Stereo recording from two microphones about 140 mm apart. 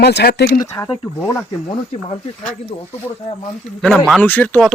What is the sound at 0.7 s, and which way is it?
Speech, 20° left (ahead or behind).